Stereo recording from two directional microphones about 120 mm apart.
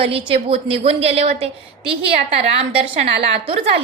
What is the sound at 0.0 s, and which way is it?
A woman's voice, 55° right (ahead or behind).